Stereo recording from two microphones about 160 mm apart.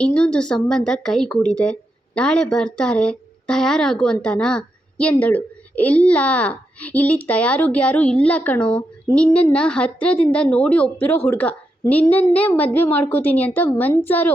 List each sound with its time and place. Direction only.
0.0 s a woman's voice: 5° left (ahead or behind)